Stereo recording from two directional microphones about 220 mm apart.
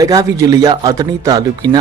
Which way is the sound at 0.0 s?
15° right (ahead or behind).